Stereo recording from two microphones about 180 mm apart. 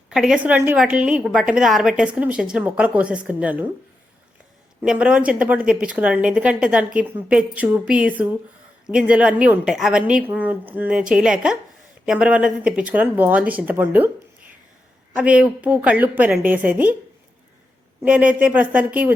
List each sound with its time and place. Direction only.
0.1 s a woman's voice: 5° right (ahead or behind)
4.8 s a woman's voice: 5° right (ahead or behind)
15.1 s speech: 5° right (ahead or behind)
18.0 s speech: 10° right (ahead or behind)